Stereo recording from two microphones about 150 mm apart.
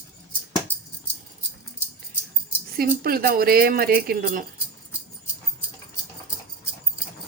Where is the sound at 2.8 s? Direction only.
85° right.